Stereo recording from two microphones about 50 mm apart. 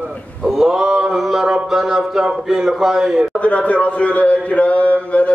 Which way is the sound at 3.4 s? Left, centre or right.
Left.